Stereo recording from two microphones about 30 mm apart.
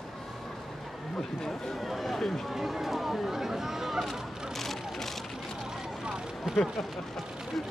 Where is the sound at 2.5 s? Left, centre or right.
Centre.